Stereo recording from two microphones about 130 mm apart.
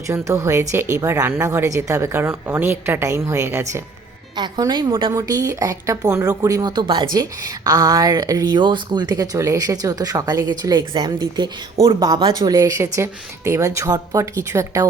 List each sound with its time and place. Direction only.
0.1 s speech: 20° right (ahead or behind)
4.4 s speech: 35° right (ahead or behind)